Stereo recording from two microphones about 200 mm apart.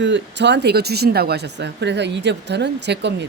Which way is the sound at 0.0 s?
60° right (ahead or behind).